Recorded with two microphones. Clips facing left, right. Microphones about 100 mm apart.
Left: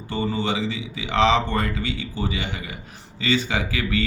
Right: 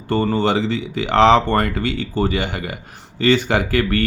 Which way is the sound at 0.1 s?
60° right (ahead or behind).